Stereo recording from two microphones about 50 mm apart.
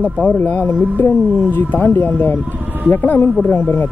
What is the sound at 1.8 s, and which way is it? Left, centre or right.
Speech, left.